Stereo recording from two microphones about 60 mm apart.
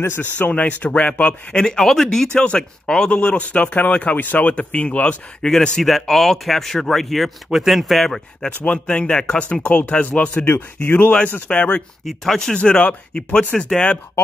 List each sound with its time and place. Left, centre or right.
0.0 s speech: left
0.5 s speech: left
1.5 s speech: centre
8.6 s speech: centre
10.5 s speech: left
11.4 s speech: centre
12.0 s speech: centre
12.5 s speech: centre